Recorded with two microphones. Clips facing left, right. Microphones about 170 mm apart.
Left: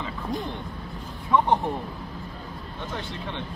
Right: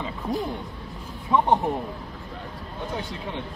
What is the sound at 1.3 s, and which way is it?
Speech, 20° right (ahead or behind).